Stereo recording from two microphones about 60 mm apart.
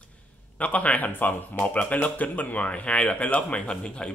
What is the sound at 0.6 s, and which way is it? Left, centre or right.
A man's voice, left.